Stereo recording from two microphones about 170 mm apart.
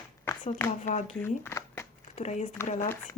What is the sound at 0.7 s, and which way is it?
Speech, 45° left (ahead or behind).